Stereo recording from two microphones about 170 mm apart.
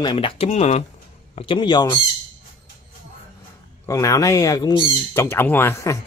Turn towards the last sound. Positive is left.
turn(degrees=15)  # may be behind; listen again after turning